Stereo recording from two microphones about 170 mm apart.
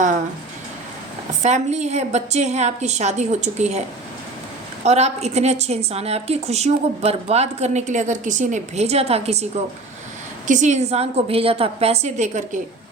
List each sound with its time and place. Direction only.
1.4 s a woman's voice: 45° right (ahead or behind)
4.9 s a woman's voice: 40° right (ahead or behind)